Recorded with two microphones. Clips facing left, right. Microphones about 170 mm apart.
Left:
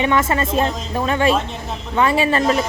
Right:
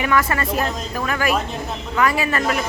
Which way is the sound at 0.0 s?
25° left (ahead or behind).